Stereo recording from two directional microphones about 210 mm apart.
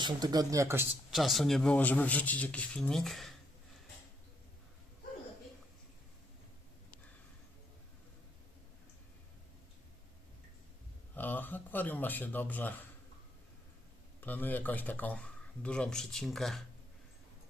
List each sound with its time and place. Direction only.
0.0 s speech: 20° right (ahead or behind)
1.1 s speech: centre (ahead or behind)
11.1 s speech: 10° left (ahead or behind)
14.2 s speech: 10° left (ahead or behind)